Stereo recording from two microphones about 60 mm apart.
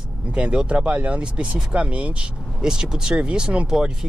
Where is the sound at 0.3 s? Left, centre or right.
Centre.